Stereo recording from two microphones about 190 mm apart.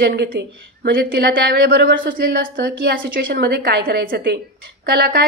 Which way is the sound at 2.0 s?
50° right (ahead or behind).